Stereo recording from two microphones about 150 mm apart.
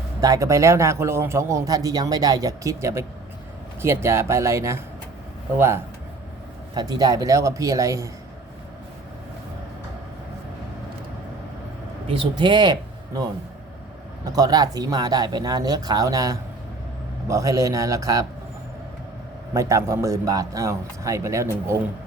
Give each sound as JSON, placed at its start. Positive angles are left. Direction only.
{"t": 0.2, "sound": "a man's voice", "side_deg": -20}
{"t": 12.0, "sound": "speech", "side_deg": -35}
{"t": 14.3, "sound": "a man's voice", "side_deg": -25}
{"t": 19.5, "sound": "a man's voice", "side_deg": -20}